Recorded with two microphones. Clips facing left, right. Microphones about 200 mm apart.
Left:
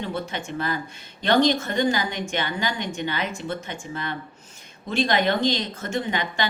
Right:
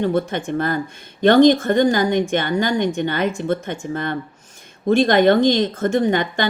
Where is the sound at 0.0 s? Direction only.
50° right (ahead or behind).